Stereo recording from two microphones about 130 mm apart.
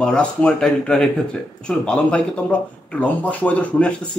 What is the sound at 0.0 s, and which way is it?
Speech, 5° left (ahead or behind).